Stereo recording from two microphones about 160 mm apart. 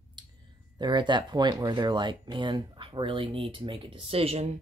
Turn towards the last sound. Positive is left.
turn(degrees=-40)  # may be behind; listen again after turning